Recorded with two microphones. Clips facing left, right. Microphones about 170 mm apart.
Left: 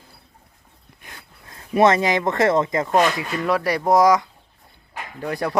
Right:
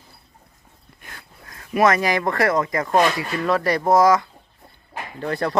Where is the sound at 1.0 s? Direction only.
20° left (ahead or behind).